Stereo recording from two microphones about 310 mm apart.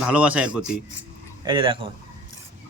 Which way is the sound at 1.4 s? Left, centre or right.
Centre.